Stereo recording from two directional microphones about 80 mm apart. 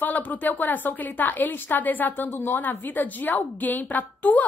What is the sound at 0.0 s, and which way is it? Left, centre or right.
A woman's voice, left.